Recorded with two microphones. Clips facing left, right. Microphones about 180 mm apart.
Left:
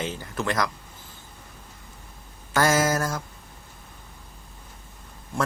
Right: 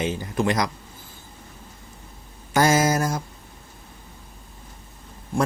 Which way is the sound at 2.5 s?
15° right (ahead or behind).